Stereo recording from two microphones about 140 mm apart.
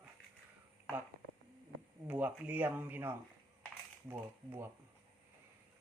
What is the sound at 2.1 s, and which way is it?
Speech, 10° right (ahead or behind).